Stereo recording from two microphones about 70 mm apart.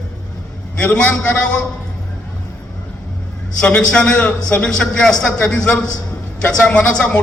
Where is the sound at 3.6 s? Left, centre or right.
Centre.